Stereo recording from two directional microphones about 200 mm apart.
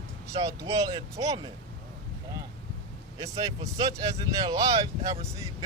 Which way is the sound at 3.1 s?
20° right (ahead or behind).